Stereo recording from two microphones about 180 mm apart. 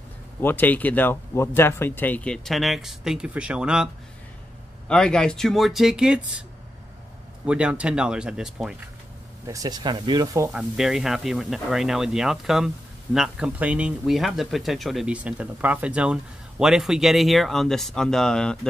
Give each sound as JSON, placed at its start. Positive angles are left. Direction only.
{"t": 0.4, "sound": "speech", "side_deg": 10}
{"t": 7.4, "sound": "speech", "side_deg": -5}
{"t": 9.5, "sound": "speech", "side_deg": -20}
{"t": 10.5, "sound": "speech", "side_deg": 0}